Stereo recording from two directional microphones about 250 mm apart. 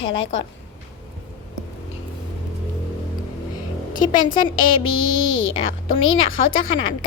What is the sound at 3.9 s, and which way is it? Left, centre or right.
Speech, left.